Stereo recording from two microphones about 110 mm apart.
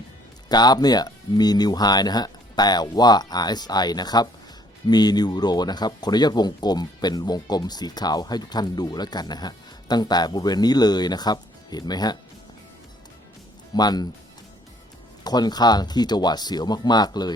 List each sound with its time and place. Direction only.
0.4 s speech: 40° left (ahead or behind)
13.7 s speech: 40° left (ahead or behind)
15.2 s speech: 40° left (ahead or behind)